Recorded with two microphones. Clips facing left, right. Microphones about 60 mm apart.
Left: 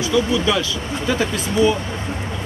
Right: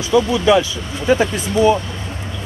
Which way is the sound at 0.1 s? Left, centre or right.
Right.